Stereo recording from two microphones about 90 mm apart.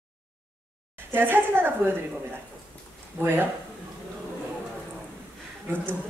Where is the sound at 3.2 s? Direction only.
25° right (ahead or behind).